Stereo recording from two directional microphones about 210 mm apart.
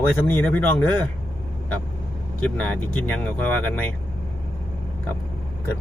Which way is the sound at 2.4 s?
5° left (ahead or behind).